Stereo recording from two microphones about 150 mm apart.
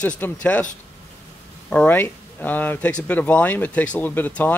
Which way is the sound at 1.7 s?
10° left (ahead or behind).